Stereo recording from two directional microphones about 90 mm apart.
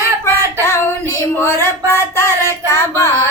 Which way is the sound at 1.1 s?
30° left (ahead or behind).